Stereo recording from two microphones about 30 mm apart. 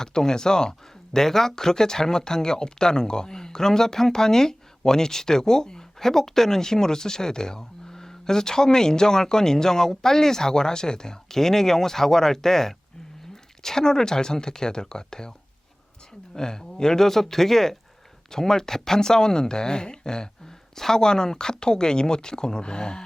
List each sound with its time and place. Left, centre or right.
0.0 s speech: left